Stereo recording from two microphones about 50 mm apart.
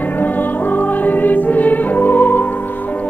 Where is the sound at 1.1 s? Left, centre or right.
Left.